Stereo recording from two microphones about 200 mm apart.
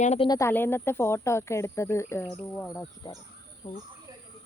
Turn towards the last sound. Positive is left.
turn(degrees=35)  # may be behind; listen again after turning